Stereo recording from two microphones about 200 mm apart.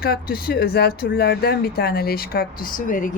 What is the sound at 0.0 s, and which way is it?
Speech, 50° left (ahead or behind).